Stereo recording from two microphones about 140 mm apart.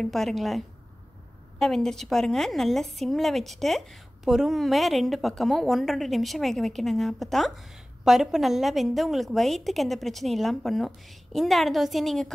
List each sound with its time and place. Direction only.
0.0 s a woman's voice: centre (ahead or behind)